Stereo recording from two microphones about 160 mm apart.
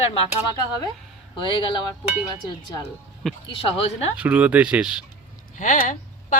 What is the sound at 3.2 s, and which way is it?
Speech, centre (ahead or behind).